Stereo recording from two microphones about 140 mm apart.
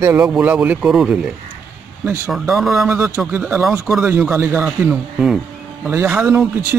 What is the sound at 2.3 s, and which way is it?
Speech, centre (ahead or behind).